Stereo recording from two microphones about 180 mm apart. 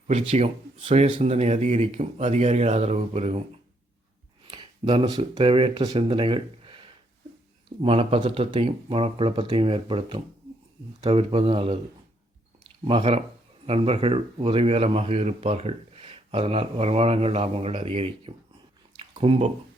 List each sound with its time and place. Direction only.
0.1 s speech: 35° right (ahead or behind)
4.4 s speech: 30° right (ahead or behind)
12.8 s speech: 30° right (ahead or behind)
18.9 s a sound: 30° right (ahead or behind)